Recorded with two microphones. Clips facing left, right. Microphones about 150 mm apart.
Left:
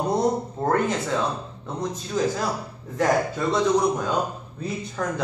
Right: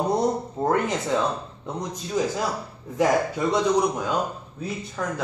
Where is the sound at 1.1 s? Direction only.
15° right (ahead or behind).